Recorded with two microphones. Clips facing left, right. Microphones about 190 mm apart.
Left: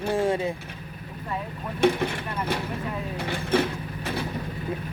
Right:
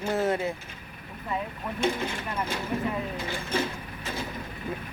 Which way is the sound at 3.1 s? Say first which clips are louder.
Left 5 dB; 65° left (ahead or behind).